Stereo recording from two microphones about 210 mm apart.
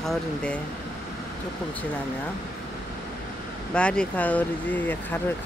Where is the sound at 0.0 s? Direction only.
5° left (ahead or behind).